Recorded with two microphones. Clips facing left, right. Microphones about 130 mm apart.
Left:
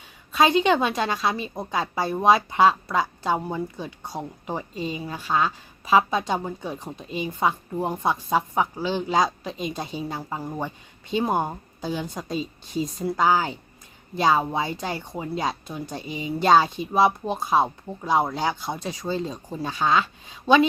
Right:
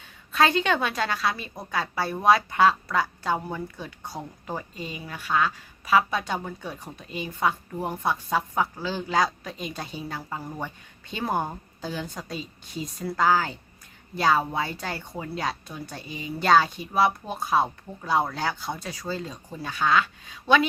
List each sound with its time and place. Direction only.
0.3 s a woman's voice: 15° left (ahead or behind)